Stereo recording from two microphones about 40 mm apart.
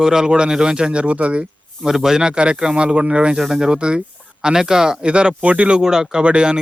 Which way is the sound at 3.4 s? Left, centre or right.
Centre.